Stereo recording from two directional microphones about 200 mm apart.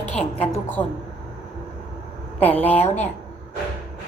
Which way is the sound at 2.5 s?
10° left (ahead or behind).